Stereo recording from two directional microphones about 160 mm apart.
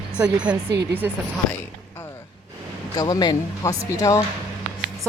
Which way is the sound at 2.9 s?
25° left (ahead or behind).